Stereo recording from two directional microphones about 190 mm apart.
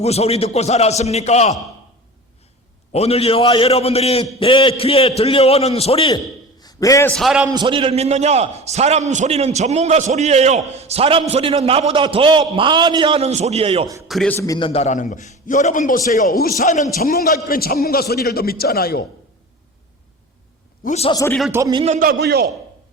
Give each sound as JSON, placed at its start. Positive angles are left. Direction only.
{"t": 0.0, "sound": "a man's voice", "side_deg": 35}
{"t": 2.9, "sound": "a man's voice", "side_deg": 35}
{"t": 6.6, "sound": "a sound", "side_deg": 20}
{"t": 7.1, "sound": "a man's voice", "side_deg": 0}
{"t": 7.4, "sound": "a man's voice", "side_deg": -25}
{"t": 14.1, "sound": "a man's voice", "side_deg": 0}
{"t": 14.3, "sound": "a man's voice", "side_deg": 20}
{"t": 14.7, "sound": "a man's voice", "side_deg": 35}
{"t": 20.8, "sound": "a man's voice", "side_deg": 35}
{"t": 21.1, "sound": "a man's voice", "side_deg": 15}
{"t": 21.5, "sound": "a man's voice", "side_deg": -20}
{"t": 21.8, "sound": "a man's voice", "side_deg": -45}